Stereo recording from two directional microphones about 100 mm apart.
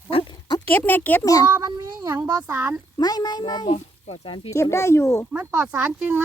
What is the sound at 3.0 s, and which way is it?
Speech, 40° left (ahead or behind).